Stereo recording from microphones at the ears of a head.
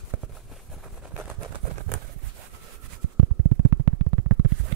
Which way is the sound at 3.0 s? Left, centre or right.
Right.